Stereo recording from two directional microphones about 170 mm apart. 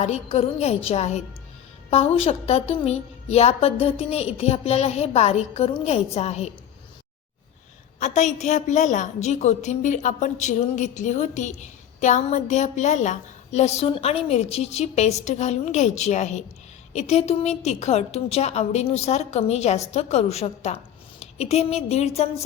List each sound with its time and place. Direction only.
0.0 s a woman's voice: 35° left (ahead or behind)
7.9 s a woman's voice: 45° left (ahead or behind)